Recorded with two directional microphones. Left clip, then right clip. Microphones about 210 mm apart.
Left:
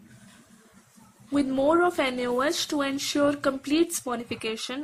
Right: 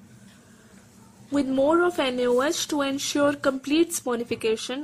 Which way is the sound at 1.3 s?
10° right (ahead or behind).